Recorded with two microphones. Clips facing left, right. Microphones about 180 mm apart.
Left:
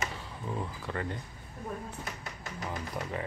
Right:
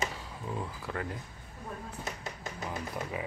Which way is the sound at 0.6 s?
Centre (ahead or behind).